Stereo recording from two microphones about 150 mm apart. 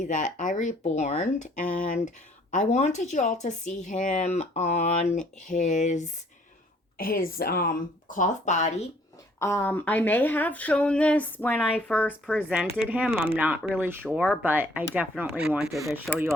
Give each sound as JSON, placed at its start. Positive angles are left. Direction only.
{"t": 0.0, "sound": "speech", "side_deg": 55}
{"t": 7.0, "sound": "a woman's voice", "side_deg": 75}
{"t": 8.1, "sound": "speech", "side_deg": 55}
{"t": 9.4, "sound": "speech", "side_deg": 15}
{"t": 12.9, "sound": "mechanisms", "side_deg": -15}
{"t": 15.2, "sound": "speech", "side_deg": -5}